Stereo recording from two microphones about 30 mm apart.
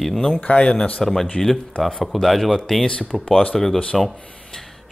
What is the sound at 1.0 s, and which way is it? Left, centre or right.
Speech, centre.